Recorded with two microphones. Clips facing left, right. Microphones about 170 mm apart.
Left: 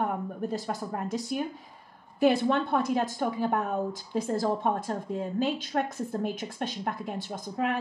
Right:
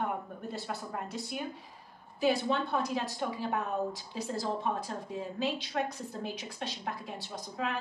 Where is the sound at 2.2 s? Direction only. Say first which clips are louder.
Left 5 dB; 55° left (ahead or behind).